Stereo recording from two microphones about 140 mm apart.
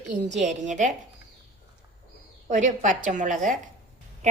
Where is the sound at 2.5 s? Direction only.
65° right (ahead or behind).